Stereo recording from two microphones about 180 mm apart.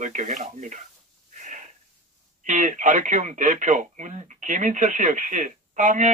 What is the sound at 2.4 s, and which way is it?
Speech, 45° right (ahead or behind).